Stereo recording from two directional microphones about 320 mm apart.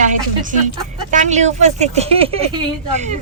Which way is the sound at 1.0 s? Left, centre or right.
Right.